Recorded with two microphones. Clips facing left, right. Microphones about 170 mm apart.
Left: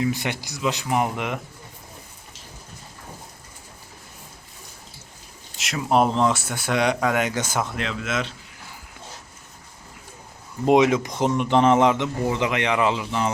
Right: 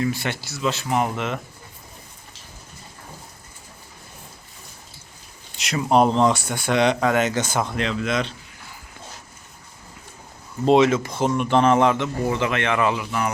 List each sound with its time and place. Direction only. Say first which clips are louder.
0.0 s a man's voice: even; 15° left (ahead or behind)
5.5 s speech: right 2 dB; centre (ahead or behind)
10.7 s a man's voice: right 1 dB; 15° left (ahead or behind)